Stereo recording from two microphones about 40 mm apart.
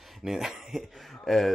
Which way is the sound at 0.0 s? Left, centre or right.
Centre.